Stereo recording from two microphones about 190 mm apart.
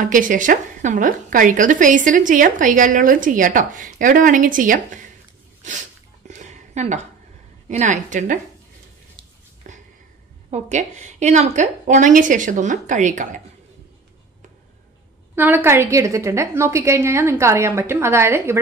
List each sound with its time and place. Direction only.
0.0 s a woman's voice: 45° right (ahead or behind)
5.6 s a sound: 40° right (ahead or behind)
7.6 s a woman's voice: 40° right (ahead or behind)
9.6 s a sound: 40° right (ahead or behind)
10.5 s a woman's voice: 35° right (ahead or behind)
15.3 s a woman's voice: 10° right (ahead or behind)